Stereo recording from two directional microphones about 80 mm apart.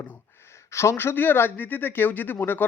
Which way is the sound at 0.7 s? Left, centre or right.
Left.